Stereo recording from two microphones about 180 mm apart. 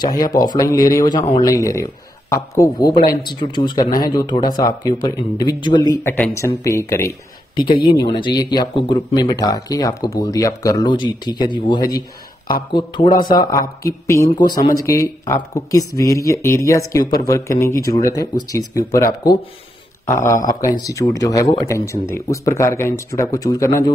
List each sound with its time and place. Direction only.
0.0 s speech: 20° left (ahead or behind)
3.8 s speech: 50° left (ahead or behind)
4.1 s speech: 20° left (ahead or behind)